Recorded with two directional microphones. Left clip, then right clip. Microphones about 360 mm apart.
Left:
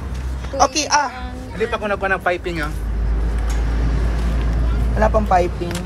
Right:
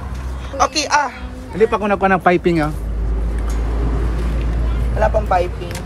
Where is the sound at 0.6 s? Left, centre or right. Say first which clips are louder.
Right 1 dB; centre.